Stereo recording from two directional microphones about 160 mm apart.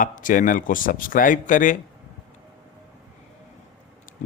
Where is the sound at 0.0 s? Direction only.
55° left (ahead or behind).